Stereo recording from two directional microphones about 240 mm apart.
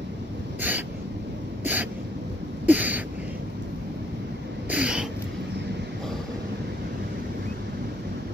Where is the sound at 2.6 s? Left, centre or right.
Centre.